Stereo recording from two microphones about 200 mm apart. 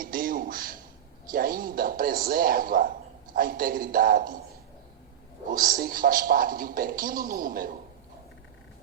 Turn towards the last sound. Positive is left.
turn(degrees=-45)  # may be behind; listen again after turning